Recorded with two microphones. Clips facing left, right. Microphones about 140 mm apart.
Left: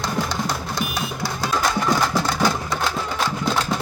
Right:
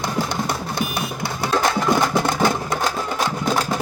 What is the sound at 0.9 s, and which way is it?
Music, 60° right (ahead or behind).